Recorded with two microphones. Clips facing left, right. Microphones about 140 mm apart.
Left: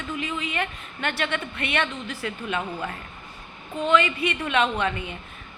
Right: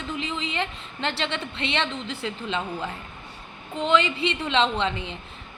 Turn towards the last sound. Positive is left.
turn(degrees=-25)  # may be behind; listen again after turning